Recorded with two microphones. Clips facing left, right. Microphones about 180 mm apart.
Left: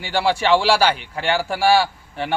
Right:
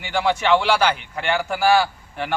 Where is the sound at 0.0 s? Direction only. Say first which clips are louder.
Left 1 dB; 30° left (ahead or behind).